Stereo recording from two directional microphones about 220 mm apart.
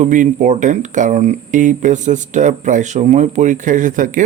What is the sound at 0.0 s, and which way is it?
Speech, 35° right (ahead or behind).